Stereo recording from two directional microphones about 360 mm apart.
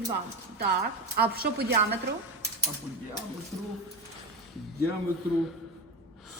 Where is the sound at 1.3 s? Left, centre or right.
Right.